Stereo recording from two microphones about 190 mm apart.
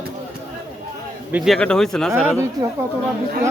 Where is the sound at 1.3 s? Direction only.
Centre (ahead or behind).